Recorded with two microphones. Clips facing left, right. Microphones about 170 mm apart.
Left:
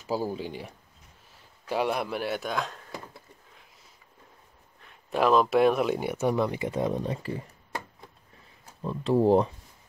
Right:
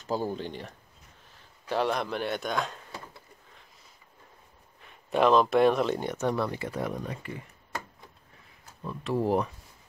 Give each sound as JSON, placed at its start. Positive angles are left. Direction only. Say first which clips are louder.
{"t": 0.0, "sound": "a man's voice", "louder": "left 1 dB", "side_deg": 5}
{"t": 5.1, "sound": "speech", "louder": "even", "side_deg": 5}
{"t": 8.8, "sound": "speech", "louder": "left 6 dB", "side_deg": 30}